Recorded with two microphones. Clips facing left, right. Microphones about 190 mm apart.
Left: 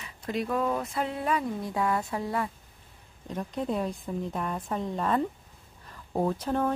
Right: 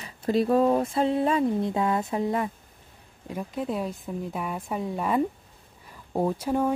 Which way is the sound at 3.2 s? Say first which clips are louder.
Right 1 dB; 5° right (ahead or behind).